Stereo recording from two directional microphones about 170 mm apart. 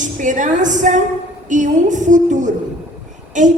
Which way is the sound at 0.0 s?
45° right (ahead or behind).